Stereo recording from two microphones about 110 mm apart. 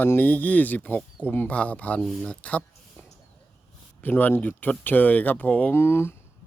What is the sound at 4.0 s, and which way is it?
Speech, 15° left (ahead or behind).